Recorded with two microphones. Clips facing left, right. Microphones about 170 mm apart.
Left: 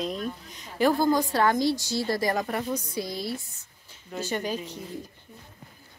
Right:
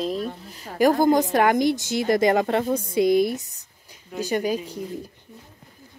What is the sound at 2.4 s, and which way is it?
Speech, 55° right (ahead or behind).